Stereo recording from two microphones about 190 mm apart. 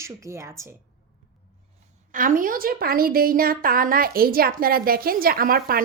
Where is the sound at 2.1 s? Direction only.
45° right (ahead or behind).